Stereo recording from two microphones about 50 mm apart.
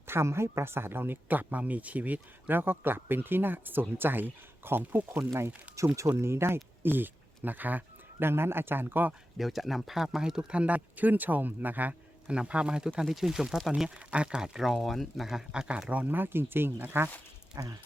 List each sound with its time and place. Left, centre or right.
0.1 s speech: right
5.3 s speech: right
6.1 s speech: right
8.3 s speech: right
9.4 s speech: centre
10.5 s speech: right
12.3 s speech: right
13.0 s speech: centre
14.1 s speech: right
15.9 s speech: right
16.1 s speech: right